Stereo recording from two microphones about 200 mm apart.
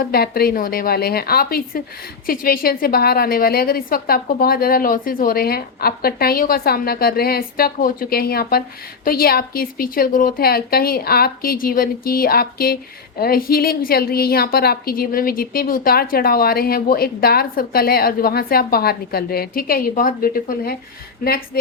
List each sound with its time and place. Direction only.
0.0 s a woman's voice: 50° left (ahead or behind)